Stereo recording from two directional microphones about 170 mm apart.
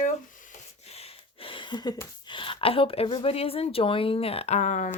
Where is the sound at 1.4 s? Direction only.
30° left (ahead or behind).